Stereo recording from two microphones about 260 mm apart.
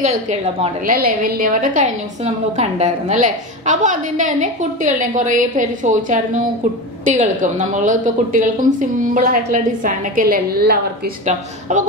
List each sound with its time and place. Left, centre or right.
0.0 s a woman's voice: right